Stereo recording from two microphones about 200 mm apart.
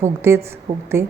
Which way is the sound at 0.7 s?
40° right (ahead or behind).